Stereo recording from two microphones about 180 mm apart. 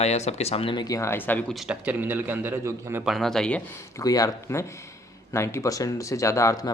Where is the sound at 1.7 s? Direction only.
10° right (ahead or behind).